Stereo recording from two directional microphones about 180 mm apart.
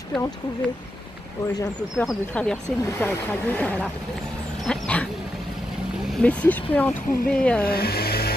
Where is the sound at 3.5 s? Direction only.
10° left (ahead or behind).